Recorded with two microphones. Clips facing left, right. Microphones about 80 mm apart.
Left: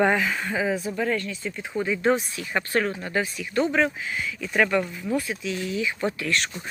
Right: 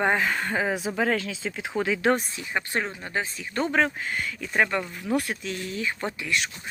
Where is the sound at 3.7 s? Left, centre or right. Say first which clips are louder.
Even; right.